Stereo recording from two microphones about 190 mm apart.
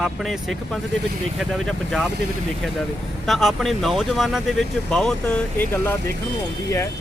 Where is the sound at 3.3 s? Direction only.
Centre (ahead or behind).